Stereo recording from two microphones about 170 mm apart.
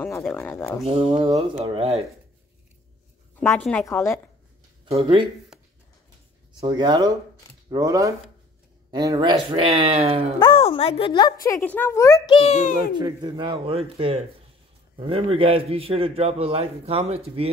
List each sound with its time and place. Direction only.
0.0 s speech: 10° left (ahead or behind)
1.6 s a man's voice: 35° right (ahead or behind)
3.3 s speech: 10° left (ahead or behind)
4.8 s a man's voice: 35° right (ahead or behind)
5.5 s a sound: 5° right (ahead or behind)
6.6 s speech: 25° right (ahead or behind)
9.5 s a man's voice: 35° right (ahead or behind)
10.4 s a woman's voice: 30° left (ahead or behind)
11.4 s speech: 15° left (ahead or behind)
12.4 s a child's voice: 40° left (ahead or behind)
12.9 s a man's voice: 25° right (ahead or behind)